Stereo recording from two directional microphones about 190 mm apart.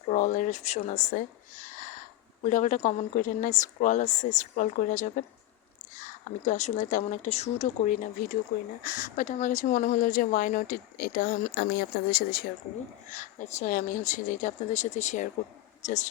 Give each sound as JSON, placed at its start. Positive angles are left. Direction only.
{"t": 0.1, "sound": "speech", "side_deg": 40}
{"t": 13.1, "sound": "speech", "side_deg": 40}